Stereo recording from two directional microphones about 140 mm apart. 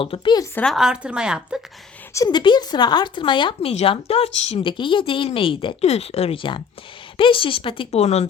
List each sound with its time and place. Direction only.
0.0 s speech: 40° left (ahead or behind)
0.5 s a woman's voice: 5° left (ahead or behind)
2.1 s speech: 30° left (ahead or behind); by 8.3 s 50° left (ahead or behind)